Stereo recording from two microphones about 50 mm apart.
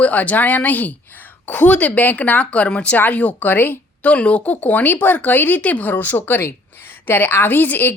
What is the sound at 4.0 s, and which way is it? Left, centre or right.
Speech, left.